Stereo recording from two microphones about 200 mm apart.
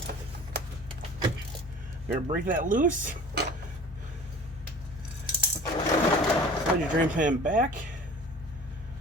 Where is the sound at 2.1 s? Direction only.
40° right (ahead or behind).